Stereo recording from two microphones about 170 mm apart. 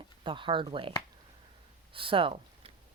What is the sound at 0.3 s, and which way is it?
Speech, 30° right (ahead or behind).